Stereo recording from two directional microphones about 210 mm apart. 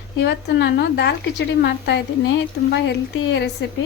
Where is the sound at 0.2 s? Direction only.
55° left (ahead or behind).